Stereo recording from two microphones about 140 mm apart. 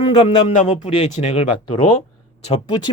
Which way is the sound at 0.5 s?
50° left (ahead or behind).